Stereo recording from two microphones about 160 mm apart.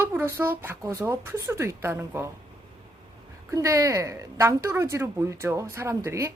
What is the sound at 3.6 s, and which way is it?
A woman's voice, 20° right (ahead or behind).